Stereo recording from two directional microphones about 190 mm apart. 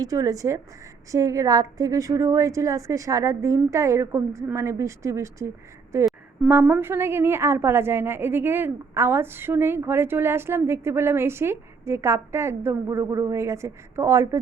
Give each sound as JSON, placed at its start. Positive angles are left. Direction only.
{"t": 0.0, "sound": "a woman's voice", "side_deg": -20}